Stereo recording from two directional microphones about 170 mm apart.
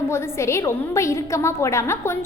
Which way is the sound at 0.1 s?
15° left (ahead or behind).